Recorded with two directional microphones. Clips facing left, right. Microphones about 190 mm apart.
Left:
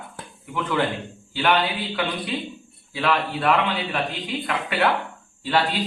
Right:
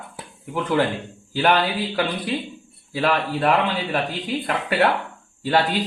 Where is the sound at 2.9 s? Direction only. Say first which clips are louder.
Right 2 dB; 40° right (ahead or behind).